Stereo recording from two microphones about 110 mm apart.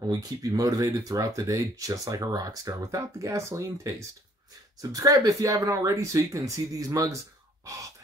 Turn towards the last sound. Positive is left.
turn(degrees=-30)  # may be behind; listen again after turning